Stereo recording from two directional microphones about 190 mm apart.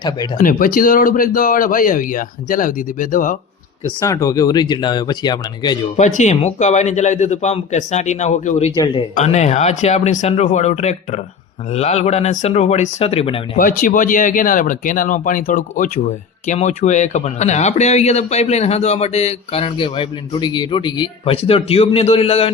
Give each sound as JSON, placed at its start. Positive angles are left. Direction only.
{"t": 0.3, "sound": "speech", "side_deg": 45}
{"t": 4.0, "sound": "speech", "side_deg": 15}
{"t": 6.0, "sound": "speech", "side_deg": 40}
{"t": 13.6, "sound": "speech", "side_deg": 45}